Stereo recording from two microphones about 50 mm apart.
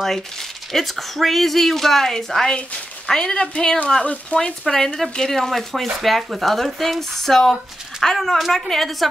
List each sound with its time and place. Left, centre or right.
0.7 s a woman's voice: centre
4.0 s speech: left
4.6 s a woman's voice: centre